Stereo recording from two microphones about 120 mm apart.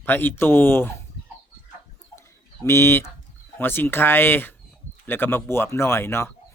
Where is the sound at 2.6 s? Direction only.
20° left (ahead or behind).